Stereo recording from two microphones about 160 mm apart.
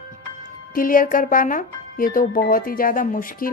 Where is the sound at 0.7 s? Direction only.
60° left (ahead or behind).